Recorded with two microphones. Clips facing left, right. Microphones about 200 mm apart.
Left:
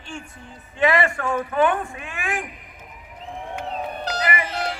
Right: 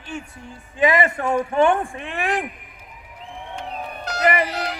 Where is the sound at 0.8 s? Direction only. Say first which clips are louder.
Right 1 dB; 20° right (ahead or behind); by 2.4 s 35° right (ahead or behind).